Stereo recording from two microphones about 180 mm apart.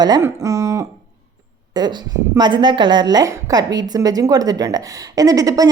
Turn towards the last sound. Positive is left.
turn(degrees=-20)  # may be behind; listen again after turning